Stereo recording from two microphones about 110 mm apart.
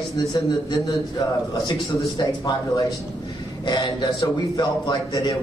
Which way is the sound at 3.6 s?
40° left (ahead or behind).